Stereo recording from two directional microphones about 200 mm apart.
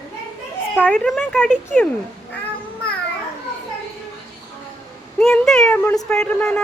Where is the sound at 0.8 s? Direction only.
5° left (ahead or behind).